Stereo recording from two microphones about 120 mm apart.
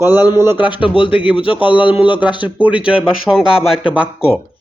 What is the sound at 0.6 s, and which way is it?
Speech, 40° left (ahead or behind).